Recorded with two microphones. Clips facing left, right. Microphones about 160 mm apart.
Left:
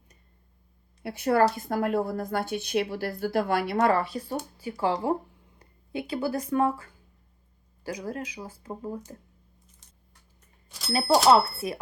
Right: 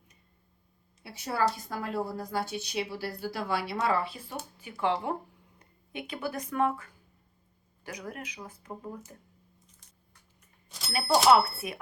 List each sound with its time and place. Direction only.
1.0 s a woman's voice: 60° left (ahead or behind); by 9.1 s 30° left (ahead or behind)
10.7 s a sound: centre (ahead or behind)
11.3 s speech: 30° left (ahead or behind)